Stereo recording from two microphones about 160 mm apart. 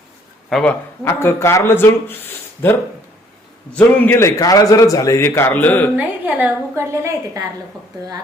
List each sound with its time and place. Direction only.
0.5 s speech: 10° left (ahead or behind)
6.0 s a woman's voice: 10° right (ahead or behind)